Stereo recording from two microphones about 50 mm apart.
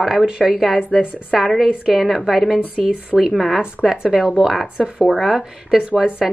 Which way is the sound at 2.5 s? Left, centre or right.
Centre.